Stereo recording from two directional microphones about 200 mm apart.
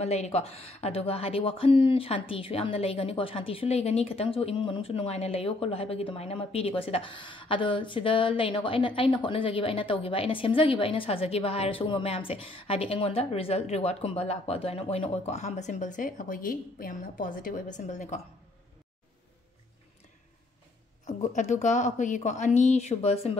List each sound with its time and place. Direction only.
0.0 s speech: 30° left (ahead or behind)
21.0 s a woman's voice: 40° left (ahead or behind)